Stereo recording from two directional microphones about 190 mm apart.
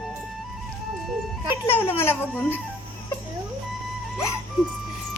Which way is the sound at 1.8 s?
10° left (ahead or behind).